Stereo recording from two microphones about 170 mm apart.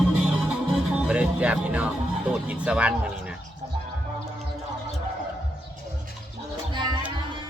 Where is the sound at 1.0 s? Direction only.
5° right (ahead or behind).